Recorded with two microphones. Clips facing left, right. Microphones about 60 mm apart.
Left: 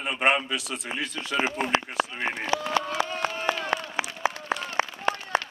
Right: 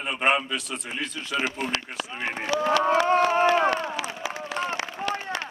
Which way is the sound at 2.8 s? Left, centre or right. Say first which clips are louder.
Right 8 dB; right.